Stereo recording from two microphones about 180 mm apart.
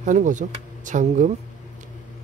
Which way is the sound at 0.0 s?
45° right (ahead or behind).